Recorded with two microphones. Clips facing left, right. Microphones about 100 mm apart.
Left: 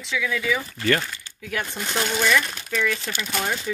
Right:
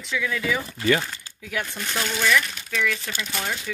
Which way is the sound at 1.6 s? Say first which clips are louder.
Left 2 dB; 15° left (ahead or behind).